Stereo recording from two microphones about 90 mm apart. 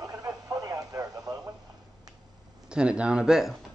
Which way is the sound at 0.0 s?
45° right (ahead or behind).